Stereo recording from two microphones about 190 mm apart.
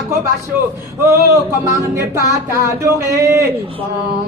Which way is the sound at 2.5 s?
15° right (ahead or behind).